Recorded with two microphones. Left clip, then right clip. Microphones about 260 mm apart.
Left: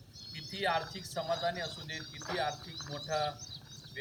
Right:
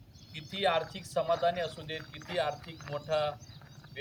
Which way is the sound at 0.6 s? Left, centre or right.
Centre.